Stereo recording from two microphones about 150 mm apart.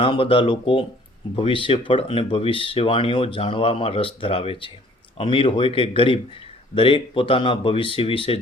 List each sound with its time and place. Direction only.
0.0 s speech: 35° left (ahead or behind)